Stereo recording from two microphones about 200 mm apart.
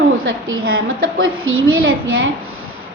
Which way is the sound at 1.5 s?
90° right.